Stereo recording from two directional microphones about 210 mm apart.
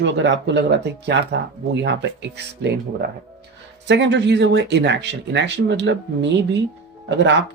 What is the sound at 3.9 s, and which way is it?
Speech, 55° right (ahead or behind).